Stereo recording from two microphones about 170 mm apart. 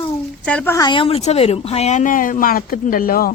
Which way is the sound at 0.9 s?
30° left (ahead or behind).